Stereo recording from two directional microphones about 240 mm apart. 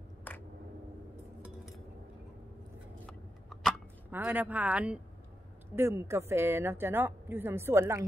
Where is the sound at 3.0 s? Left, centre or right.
Centre.